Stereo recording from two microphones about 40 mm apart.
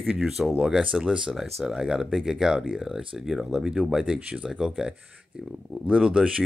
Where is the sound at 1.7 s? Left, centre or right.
Centre.